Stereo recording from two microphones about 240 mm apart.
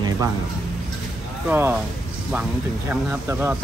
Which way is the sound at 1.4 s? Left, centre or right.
Centre.